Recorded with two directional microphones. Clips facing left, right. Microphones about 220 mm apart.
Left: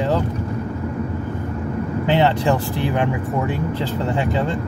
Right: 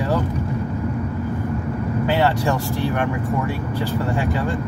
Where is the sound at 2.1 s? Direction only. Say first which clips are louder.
Left 3 dB; 20° left (ahead or behind).